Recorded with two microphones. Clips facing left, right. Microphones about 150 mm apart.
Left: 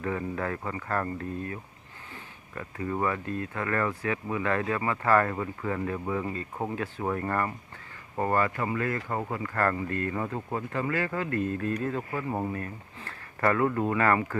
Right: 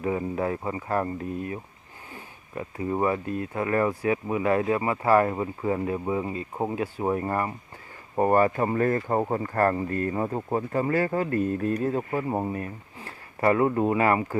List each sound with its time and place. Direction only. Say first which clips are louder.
0.0 s speech: right 4 dB; 20° right (ahead or behind)
2.6 s speech: right 4 dB; 20° right (ahead or behind)
8.5 s speech: right 6 dB; 35° right (ahead or behind); by 14.3 s 20° right (ahead or behind)